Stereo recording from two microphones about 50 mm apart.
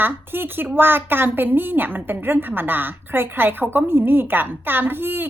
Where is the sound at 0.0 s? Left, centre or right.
Right.